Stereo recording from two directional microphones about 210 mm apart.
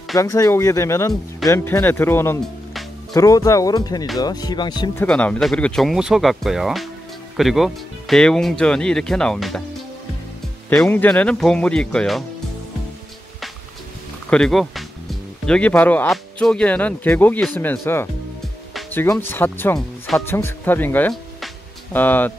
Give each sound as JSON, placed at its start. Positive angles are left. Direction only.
{"t": 0.2, "sound": "speech", "side_deg": 15}
{"t": 5.0, "sound": "speech", "side_deg": 5}
{"t": 10.7, "sound": "speech", "side_deg": 5}
{"t": 14.3, "sound": "speech", "side_deg": 0}
{"t": 18.7, "sound": "music", "side_deg": 0}
{"t": 18.9, "sound": "speech", "side_deg": 10}